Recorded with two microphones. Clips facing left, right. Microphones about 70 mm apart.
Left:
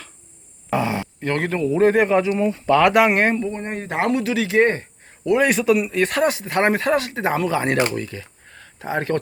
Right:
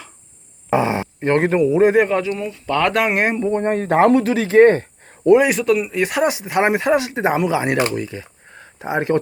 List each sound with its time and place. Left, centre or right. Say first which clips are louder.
0.7 s a sound: right 4 dB; right
1.6 s speech: even; centre
2.0 s speech: right 1 dB; centre
2.4 s speech: left 6 dB; left
2.6 s speech: left 3 dB; centre
3.5 s speech: right 9 dB; right
5.4 s speech: right 1 dB; centre